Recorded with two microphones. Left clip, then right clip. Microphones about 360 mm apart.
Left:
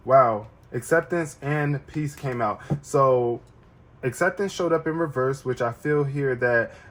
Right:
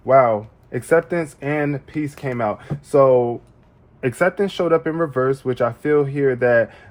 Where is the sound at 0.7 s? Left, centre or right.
Right.